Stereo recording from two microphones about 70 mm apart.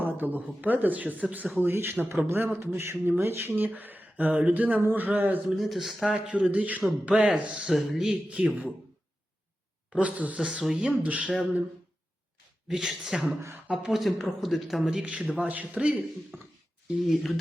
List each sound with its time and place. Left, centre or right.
0.0 s a sound: right
0.4 s speech: right
1.5 s speech: right
5.5 s a man's voice: centre
7.7 s speech: centre
8.3 s speech: centre
9.9 s a man's voice: right; by 10.8 s centre
10.8 s speech: centre
12.6 s a man's voice: centre
16.3 s a sound: right
17.0 s speech: centre